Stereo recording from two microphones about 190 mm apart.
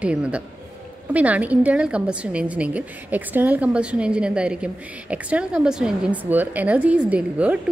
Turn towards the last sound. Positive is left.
turn(degrees=-5)  # may be behind; listen again after turning